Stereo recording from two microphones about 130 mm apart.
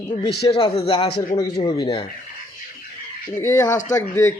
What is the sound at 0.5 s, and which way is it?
A man's voice, 45° left (ahead or behind).